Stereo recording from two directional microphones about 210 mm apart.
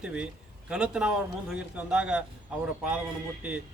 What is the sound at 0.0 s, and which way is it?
A man's voice, 5° right (ahead or behind).